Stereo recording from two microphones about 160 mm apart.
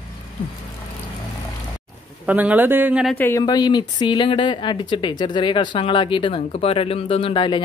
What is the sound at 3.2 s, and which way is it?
Speech, 20° left (ahead or behind).